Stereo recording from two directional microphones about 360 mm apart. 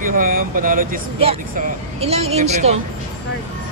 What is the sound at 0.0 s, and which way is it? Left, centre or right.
A woman's voice, right.